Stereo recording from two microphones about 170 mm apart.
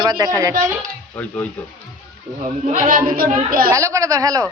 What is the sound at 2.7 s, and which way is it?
Speech, 50° right (ahead or behind).